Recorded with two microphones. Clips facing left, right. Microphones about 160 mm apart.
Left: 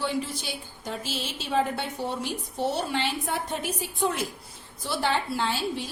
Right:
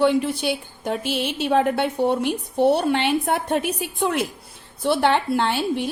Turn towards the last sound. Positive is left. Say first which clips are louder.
# right 6 dB
turn(degrees=-60)  # may be behind; listen again after turning